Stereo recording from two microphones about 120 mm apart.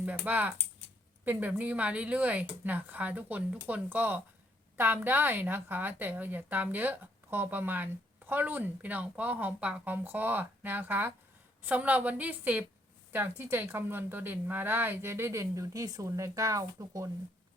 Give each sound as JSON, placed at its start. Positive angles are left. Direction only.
{"t": 0.0, "sound": "a woman's voice", "side_deg": -15}